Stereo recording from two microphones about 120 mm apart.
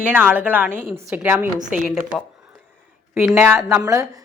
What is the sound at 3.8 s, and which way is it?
Speech, 30° right (ahead or behind).